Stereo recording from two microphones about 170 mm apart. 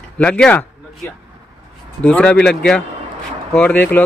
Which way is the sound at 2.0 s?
5° left (ahead or behind).